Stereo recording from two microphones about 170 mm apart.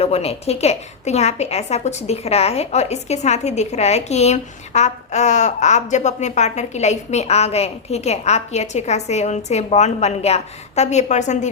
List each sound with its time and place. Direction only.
0.0 s a woman's voice: 35° left (ahead or behind)